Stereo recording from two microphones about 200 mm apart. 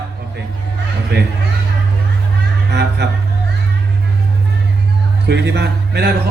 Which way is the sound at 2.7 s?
60° right (ahead or behind).